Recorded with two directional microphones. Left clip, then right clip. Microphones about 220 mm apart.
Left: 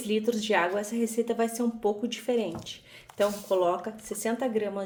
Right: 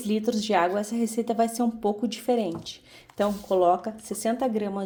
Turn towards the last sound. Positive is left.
turn(degrees=-25)  # may be behind; listen again after turning